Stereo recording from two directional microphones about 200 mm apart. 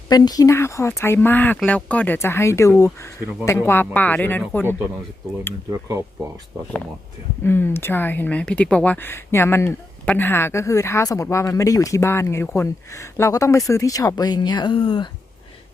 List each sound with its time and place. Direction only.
0.1 s speech: 20° left (ahead or behind)
7.4 s speech: 10° left (ahead or behind)